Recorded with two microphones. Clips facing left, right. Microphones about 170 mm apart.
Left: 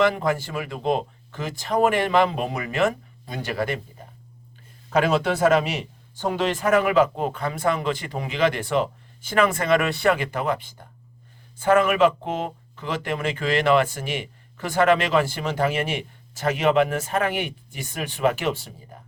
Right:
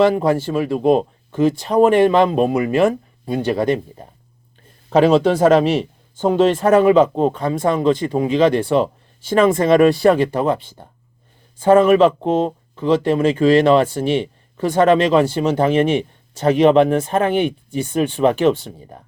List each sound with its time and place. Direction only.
0.0 s speech: 25° right (ahead or behind)
4.9 s speech: 30° right (ahead or behind)